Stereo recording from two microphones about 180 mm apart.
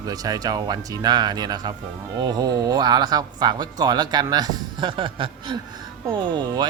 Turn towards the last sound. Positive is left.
turn(degrees=-25)  # may be behind; listen again after turning